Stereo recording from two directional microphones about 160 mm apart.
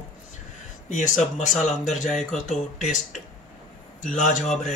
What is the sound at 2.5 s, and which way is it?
Speech, 50° left (ahead or behind).